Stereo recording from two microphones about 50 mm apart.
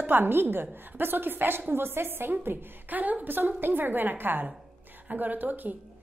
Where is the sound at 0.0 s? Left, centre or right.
Right.